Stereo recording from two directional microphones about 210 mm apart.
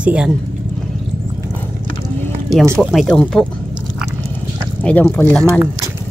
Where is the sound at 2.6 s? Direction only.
15° right (ahead or behind).